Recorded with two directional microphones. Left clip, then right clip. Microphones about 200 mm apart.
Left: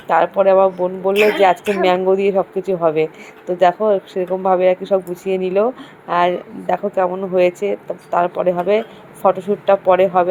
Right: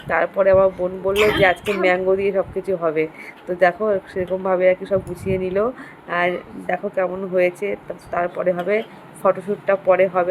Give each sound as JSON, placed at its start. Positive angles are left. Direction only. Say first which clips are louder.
{"t": 0.1, "sound": "speech", "louder": "left 3 dB", "side_deg": 10}
{"t": 1.1, "sound": "speech", "louder": "left 3 dB", "side_deg": -15}
{"t": 1.8, "sound": "speech", "louder": "left 2 dB", "side_deg": 15}